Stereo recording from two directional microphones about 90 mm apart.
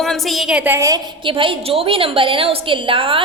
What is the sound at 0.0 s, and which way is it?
Speech, centre (ahead or behind).